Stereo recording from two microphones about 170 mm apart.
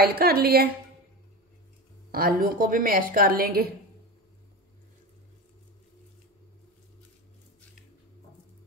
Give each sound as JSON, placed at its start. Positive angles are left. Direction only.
{"t": 0.0, "sound": "a woman's voice", "side_deg": -65}
{"t": 2.0, "sound": "a woman's voice", "side_deg": -60}